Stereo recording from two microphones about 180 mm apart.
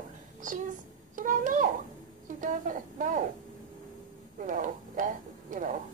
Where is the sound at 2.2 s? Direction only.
45° right (ahead or behind).